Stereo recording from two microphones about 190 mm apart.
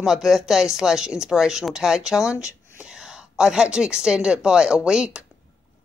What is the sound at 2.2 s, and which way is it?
Speech, 15° left (ahead or behind).